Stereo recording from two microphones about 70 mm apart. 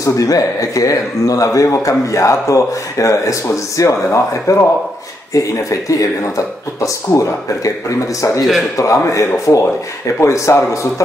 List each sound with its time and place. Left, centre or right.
0.0 s a man's voice: left
8.4 s a man's voice: centre
8.7 s a man's voice: left